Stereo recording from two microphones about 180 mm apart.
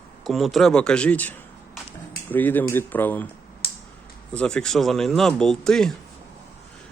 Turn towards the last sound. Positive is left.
turn(degrees=5)  # may be behind; listen again after turning